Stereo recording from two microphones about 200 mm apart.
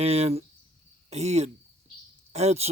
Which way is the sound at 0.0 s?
30° right (ahead or behind).